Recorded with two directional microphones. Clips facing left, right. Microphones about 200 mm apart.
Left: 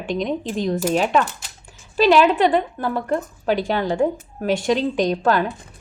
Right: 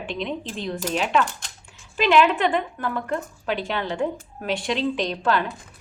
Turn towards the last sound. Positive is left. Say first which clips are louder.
# left 5 dB
turn(degrees=45)  # may be behind; listen again after turning